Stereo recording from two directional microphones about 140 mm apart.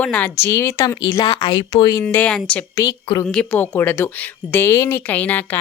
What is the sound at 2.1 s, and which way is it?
Speech, 5° left (ahead or behind).